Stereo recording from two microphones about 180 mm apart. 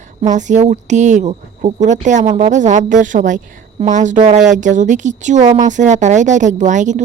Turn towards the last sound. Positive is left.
turn(degrees=-45)  # may be behind; listen again after turning